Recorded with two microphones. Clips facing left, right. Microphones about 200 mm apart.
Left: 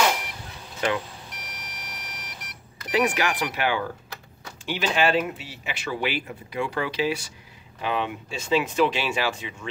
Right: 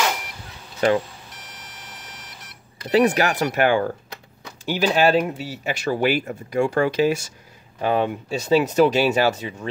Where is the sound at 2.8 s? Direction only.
35° right (ahead or behind).